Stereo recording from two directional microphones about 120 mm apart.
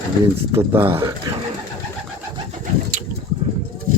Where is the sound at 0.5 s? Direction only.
20° right (ahead or behind).